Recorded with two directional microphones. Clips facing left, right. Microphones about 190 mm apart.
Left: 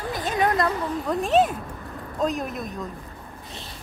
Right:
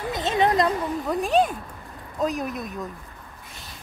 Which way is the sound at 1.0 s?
Centre (ahead or behind).